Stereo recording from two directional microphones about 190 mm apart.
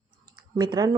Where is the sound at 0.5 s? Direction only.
20° right (ahead or behind).